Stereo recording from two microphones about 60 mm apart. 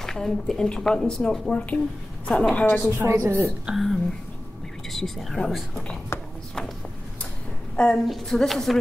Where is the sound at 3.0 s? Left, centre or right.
Right.